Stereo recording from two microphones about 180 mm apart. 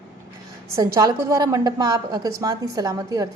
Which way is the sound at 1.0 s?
20° right (ahead or behind).